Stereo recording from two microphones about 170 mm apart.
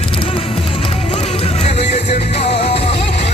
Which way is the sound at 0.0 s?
35° left (ahead or behind).